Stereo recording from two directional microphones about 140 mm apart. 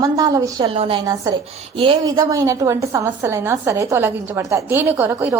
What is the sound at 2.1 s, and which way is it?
A woman's voice, 25° right (ahead or behind).